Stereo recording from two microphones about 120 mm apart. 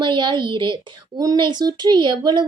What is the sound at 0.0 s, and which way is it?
A woman's voice, 40° right (ahead or behind).